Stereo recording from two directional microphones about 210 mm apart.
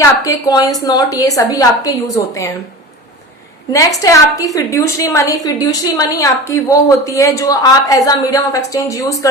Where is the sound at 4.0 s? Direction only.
15° left (ahead or behind).